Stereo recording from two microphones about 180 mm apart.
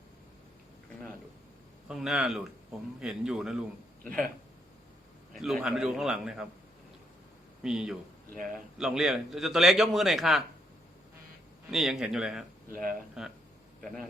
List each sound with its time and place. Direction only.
1.9 s a man's voice: 5° right (ahead or behind)
5.3 s a man's voice: centre (ahead or behind)
7.6 s a man's voice: 5° right (ahead or behind)
11.7 s a man's voice: centre (ahead or behind)
12.7 s speech: 50° right (ahead or behind)
13.8 s a man's voice: centre (ahead or behind)